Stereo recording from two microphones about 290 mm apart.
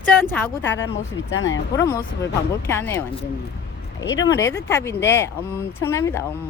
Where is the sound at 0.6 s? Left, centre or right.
Left.